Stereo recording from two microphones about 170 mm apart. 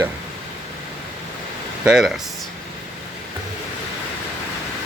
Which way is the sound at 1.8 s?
5° right (ahead or behind).